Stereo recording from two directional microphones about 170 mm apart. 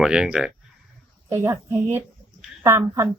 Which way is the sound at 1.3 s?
15° right (ahead or behind).